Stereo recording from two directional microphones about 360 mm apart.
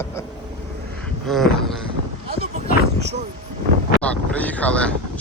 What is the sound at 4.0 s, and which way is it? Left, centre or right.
Vehicle, centre.